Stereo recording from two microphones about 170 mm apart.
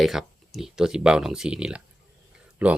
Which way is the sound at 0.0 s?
Centre (ahead or behind).